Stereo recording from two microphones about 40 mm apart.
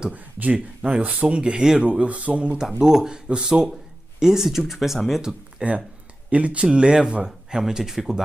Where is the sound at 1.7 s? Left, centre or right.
Right.